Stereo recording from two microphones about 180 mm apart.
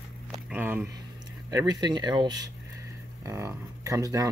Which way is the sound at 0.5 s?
10° right (ahead or behind).